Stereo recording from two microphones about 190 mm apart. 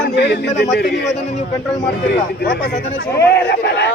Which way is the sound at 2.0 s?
55° left (ahead or behind).